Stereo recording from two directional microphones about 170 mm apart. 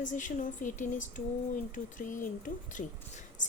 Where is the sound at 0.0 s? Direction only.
45° left (ahead or behind).